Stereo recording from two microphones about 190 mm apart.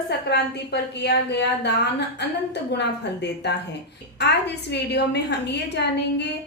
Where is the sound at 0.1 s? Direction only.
65° left (ahead or behind).